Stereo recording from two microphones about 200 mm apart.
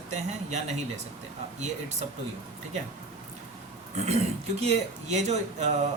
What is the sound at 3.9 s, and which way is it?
Speech, 35° right (ahead or behind).